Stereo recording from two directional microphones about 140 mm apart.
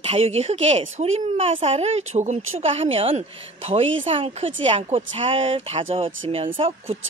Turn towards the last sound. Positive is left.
turn(degrees=-45)  # may be behind; listen again after turning